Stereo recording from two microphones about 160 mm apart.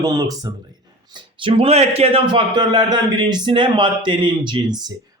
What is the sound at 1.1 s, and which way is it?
A man's voice, 35° right (ahead or behind).